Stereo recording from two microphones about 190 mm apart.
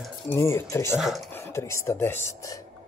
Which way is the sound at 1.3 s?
15° left (ahead or behind).